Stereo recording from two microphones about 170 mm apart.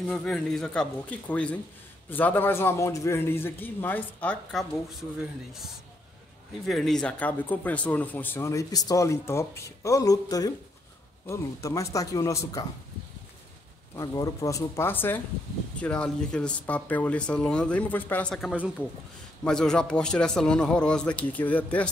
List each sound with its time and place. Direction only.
0.1 s speech: 5° left (ahead or behind)
6.7 s speech: centre (ahead or behind); by 12.6 s 20° left (ahead or behind)
13.9 s speech: 20° left (ahead or behind)